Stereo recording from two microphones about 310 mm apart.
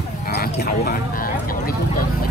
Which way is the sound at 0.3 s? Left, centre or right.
Left.